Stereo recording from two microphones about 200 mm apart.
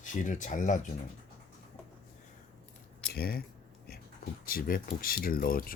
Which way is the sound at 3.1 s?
50° left (ahead or behind).